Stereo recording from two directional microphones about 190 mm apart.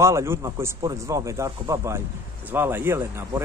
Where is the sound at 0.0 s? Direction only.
15° right (ahead or behind).